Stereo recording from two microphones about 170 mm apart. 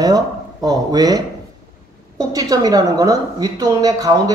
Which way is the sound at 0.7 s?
20° right (ahead or behind).